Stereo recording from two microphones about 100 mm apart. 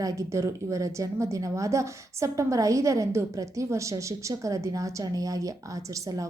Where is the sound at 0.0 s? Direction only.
35° right (ahead or behind).